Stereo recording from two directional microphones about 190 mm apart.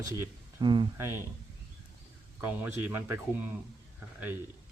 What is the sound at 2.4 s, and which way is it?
Speech, 10° right (ahead or behind).